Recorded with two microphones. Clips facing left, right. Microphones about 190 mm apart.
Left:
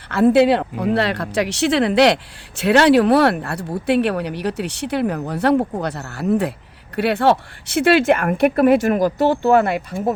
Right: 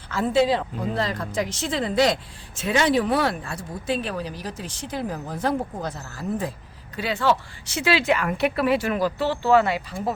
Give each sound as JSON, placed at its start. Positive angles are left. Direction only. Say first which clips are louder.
{"t": 0.1, "sound": "speech", "louder": "left 7 dB", "side_deg": 65}